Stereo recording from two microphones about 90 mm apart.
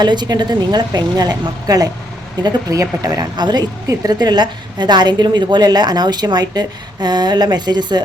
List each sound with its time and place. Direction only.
0.0 s speech: 55° right (ahead or behind)